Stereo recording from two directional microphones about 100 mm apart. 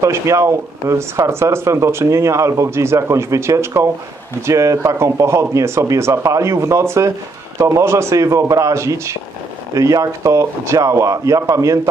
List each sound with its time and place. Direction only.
0.0 s speech: 30° right (ahead or behind)